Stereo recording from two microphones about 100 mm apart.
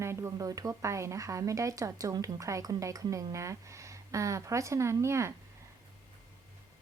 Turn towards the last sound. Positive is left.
turn(degrees=-30)  # may be behind; listen again after turning